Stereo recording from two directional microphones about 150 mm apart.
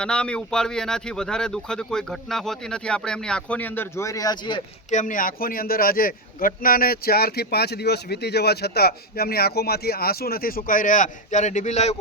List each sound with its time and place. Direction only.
0.0 s speech: 5° left (ahead or behind); by 4.6 s 30° left (ahead or behind)
4.9 s a man's voice: 55° left (ahead or behind)